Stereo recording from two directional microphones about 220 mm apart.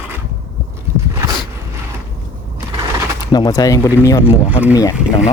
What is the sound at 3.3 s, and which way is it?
Speech, 20° left (ahead or behind).